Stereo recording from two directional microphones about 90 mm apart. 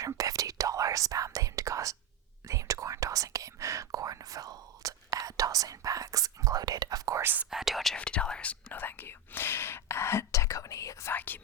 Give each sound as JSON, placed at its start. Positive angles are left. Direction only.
{"t": 0.0, "sound": "whispering", "side_deg": -40}
{"t": 7.2, "sound": "whispering", "side_deg": -25}
{"t": 7.5, "sound": "whispering", "side_deg": -5}
{"t": 7.9, "sound": "whispering", "side_deg": 10}
{"t": 11.1, "sound": "whispering", "side_deg": 20}